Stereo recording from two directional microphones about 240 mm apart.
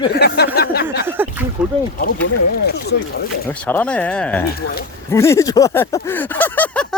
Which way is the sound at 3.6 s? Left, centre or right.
Centre.